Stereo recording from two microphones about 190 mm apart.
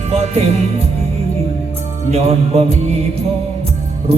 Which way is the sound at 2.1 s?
30° right (ahead or behind).